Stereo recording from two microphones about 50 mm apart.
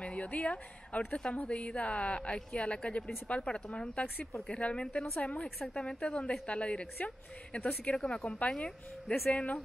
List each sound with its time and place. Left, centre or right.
0.0 s a woman's voice: left
5.6 s a woman's voice: centre